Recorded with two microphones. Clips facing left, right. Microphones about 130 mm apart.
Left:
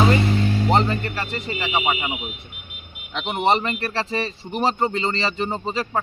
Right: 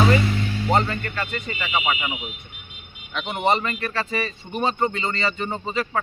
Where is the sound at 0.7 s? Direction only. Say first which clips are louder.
Right 1 dB; 30° left (ahead or behind).